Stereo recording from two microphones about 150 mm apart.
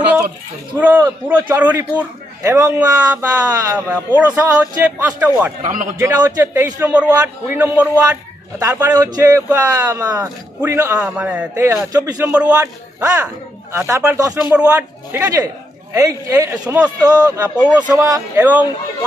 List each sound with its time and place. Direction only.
0.7 s a man's voice: 15° right (ahead or behind)
3.7 s a man's voice: 10° right (ahead or behind)
5.6 s a man's voice: 60° right (ahead or behind)
5.9 s a man's voice: 20° right (ahead or behind)
8.5 s a man's voice: 20° right (ahead or behind)
12.3 s a man's voice: 10° right (ahead or behind)
12.5 s speech: 20° right (ahead or behind)
14.5 s a man's voice: 10° right (ahead or behind)
15.1 s a man's voice: 20° right (ahead or behind)
17.6 s a man's voice: 10° right (ahead or behind)